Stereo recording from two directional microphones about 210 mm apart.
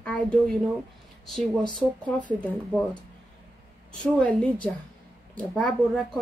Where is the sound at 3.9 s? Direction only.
5° left (ahead or behind).